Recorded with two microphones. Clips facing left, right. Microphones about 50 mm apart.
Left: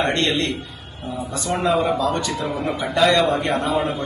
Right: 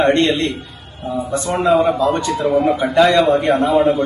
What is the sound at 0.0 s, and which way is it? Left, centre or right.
A man's voice, right.